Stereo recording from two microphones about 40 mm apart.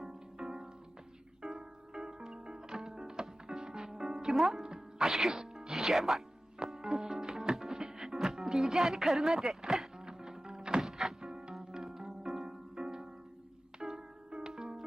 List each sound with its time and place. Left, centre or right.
0.0 s music: centre
4.3 s speech: centre
4.6 s music: centre
5.0 s speech: centre
5.5 s music: centre
10.8 s music: centre